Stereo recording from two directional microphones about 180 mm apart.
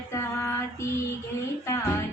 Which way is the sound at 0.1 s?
15° left (ahead or behind).